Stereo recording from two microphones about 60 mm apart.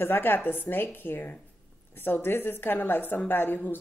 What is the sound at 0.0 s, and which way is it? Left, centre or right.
Speech, left.